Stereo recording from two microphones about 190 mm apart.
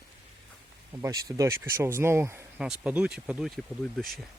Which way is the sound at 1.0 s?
15° right (ahead or behind).